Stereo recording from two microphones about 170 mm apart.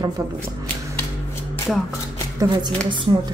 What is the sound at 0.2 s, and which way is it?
Speech, 20° right (ahead or behind).